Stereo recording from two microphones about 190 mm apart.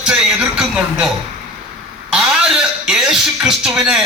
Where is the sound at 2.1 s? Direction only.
5° right (ahead or behind).